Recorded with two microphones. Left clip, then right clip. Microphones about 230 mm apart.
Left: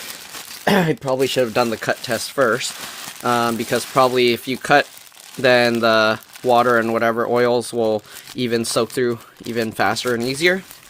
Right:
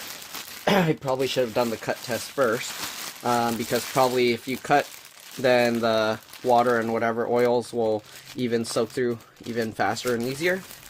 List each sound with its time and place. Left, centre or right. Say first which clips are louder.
0.6 s speech: left 4 dB; left